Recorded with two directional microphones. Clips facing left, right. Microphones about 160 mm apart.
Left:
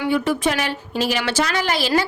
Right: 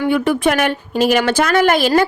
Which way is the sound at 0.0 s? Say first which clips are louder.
Right 4 dB; 60° right (ahead or behind).